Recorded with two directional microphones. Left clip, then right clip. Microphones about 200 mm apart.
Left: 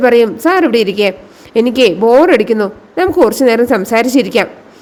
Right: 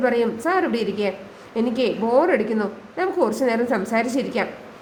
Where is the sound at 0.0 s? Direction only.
40° left (ahead or behind).